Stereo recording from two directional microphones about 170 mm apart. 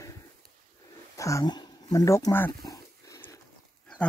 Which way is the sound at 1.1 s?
20° left (ahead or behind).